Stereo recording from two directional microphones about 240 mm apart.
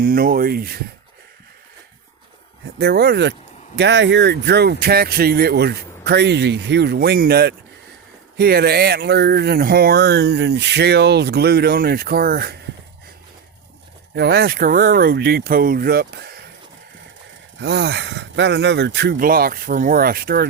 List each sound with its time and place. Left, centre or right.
0.0 s speech: right
2.7 s speech: right
14.2 s speech: right
17.6 s speech: right